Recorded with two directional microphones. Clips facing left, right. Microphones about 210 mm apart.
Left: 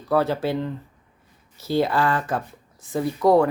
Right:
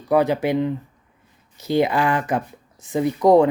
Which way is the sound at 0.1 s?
15° right (ahead or behind).